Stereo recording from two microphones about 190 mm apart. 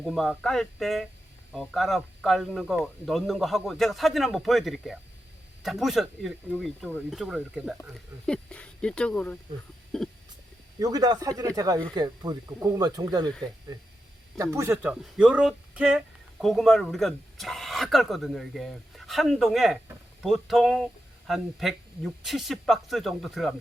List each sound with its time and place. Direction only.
0.0 s speech: centre (ahead or behind)
10.8 s speech: 20° right (ahead or behind)
14.3 s speech: 15° right (ahead or behind); by 23.6 s centre (ahead or behind)